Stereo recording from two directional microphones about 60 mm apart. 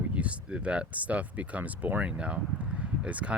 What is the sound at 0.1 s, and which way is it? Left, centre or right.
Speech, centre.